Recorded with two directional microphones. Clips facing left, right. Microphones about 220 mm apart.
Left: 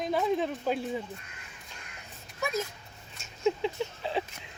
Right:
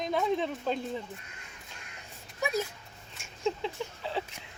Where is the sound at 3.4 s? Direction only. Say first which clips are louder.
Left 4 dB; 15° left (ahead or behind).